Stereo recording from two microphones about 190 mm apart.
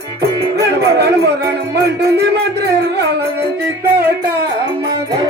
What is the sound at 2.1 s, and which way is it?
Speech, 60° right (ahead or behind).